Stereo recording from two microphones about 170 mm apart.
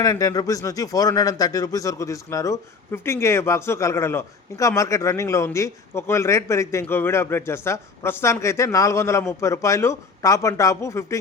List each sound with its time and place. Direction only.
0.0 s speech: 20° left (ahead or behind)